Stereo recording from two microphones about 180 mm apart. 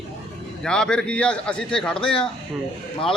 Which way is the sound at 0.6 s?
5° left (ahead or behind).